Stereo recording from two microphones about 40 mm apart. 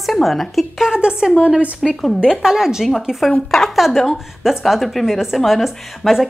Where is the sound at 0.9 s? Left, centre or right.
Right.